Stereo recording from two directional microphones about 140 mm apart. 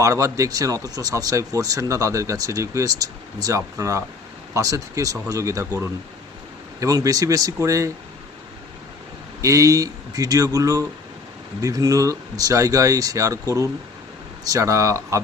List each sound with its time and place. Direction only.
0.0 s speech: 25° right (ahead or behind)
6.7 s speech: 25° right (ahead or behind)
9.4 s speech: 25° right (ahead or behind)
14.4 s speech: 25° right (ahead or behind)